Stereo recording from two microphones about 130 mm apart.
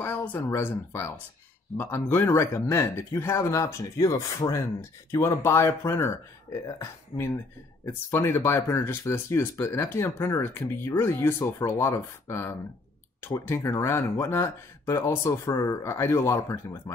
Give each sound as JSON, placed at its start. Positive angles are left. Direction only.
{"t": 0.0, "sound": "speech", "side_deg": 15}